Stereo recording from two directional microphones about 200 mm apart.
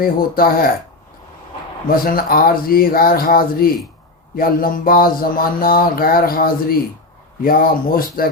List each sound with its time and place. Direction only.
0.0 s mantra: 45° left (ahead or behind)
2.0 s mantra: 45° left (ahead or behind)